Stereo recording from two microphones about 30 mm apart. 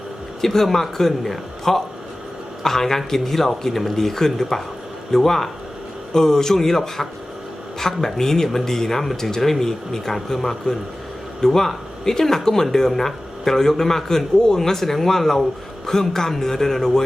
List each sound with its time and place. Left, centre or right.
0.4 s speech: centre